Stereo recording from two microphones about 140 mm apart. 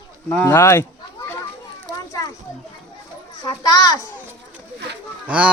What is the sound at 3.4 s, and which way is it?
Speech, 25° left (ahead or behind).